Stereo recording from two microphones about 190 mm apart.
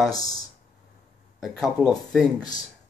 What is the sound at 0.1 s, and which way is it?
Speech, 20° left (ahead or behind).